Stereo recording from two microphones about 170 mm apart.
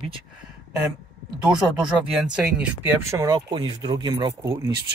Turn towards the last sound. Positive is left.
turn(degrees=-20)  # may be behind; listen again after turning